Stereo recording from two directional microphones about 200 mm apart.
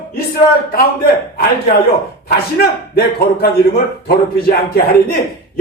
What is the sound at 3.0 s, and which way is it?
A man's voice, 50° left (ahead or behind).